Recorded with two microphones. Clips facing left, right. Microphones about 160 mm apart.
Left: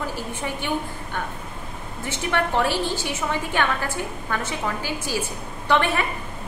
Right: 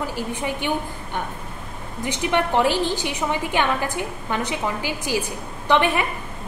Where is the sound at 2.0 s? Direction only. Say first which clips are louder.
Right 3 dB; 15° right (ahead or behind).